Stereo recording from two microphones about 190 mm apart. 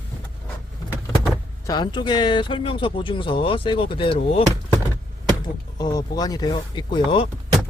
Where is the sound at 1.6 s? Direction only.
20° left (ahead or behind).